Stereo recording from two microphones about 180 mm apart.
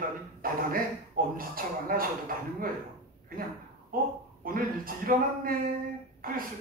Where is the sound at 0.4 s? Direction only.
55° right (ahead or behind).